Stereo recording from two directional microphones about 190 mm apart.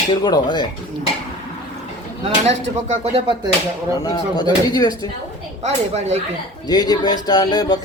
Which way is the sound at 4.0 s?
20° left (ahead or behind).